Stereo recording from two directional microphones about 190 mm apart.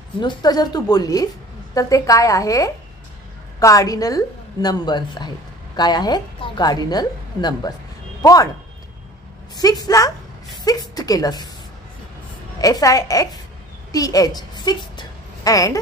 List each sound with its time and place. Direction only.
0.2 s a woman's voice: 20° left (ahead or behind)
9.6 s a woman's voice: 20° left (ahead or behind)
10.6 s a sound: 20° left (ahead or behind)
12.5 s a woman's voice: 20° left (ahead or behind)